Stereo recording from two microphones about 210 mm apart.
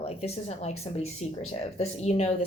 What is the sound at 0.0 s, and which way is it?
A woman's voice, 30° left (ahead or behind).